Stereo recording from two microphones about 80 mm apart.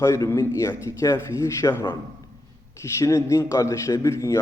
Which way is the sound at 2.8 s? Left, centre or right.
Left.